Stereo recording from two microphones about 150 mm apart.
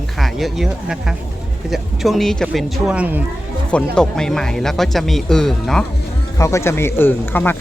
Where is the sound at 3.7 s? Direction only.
5° left (ahead or behind).